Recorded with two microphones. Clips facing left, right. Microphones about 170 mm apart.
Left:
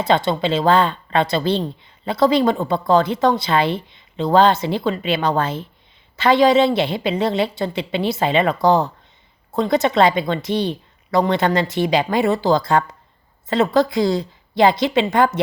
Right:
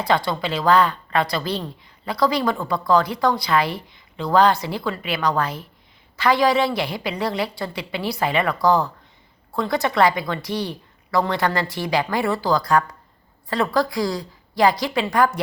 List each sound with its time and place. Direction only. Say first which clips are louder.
0.0 s speech: left 4 dB; 25° left (ahead or behind)